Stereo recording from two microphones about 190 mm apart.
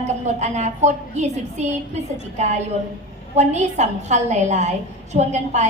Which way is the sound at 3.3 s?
35° right (ahead or behind).